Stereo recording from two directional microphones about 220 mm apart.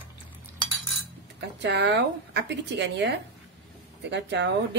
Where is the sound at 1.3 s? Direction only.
50° right (ahead or behind).